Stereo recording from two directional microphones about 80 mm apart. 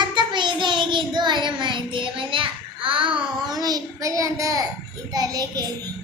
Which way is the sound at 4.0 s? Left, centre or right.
Right.